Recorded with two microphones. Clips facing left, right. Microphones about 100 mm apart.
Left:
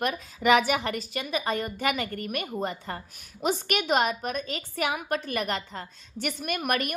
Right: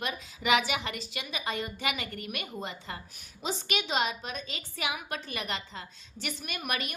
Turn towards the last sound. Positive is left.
turn(degrees=55)  # may be behind; listen again after turning